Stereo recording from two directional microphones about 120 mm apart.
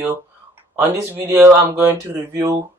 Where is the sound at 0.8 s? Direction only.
20° right (ahead or behind).